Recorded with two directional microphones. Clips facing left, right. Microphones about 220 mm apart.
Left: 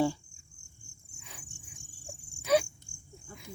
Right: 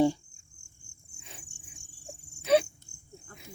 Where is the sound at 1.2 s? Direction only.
25° right (ahead or behind).